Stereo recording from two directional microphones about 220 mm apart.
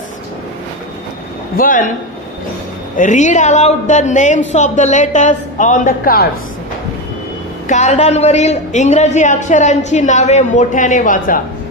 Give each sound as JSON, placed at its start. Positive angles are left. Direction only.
{"t": 1.6, "sound": "a woman's voice", "side_deg": 40}
{"t": 3.0, "sound": "a woman's voice", "side_deg": 35}
{"t": 7.6, "sound": "a woman's voice", "side_deg": 35}